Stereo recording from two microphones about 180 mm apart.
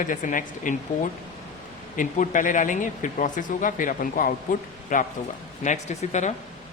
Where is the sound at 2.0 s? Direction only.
45° left (ahead or behind).